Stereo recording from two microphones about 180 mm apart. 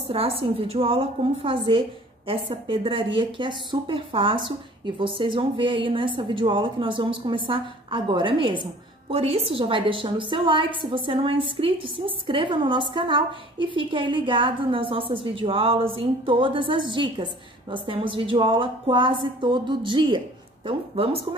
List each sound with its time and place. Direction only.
0.1 s a woman's voice: 30° right (ahead or behind)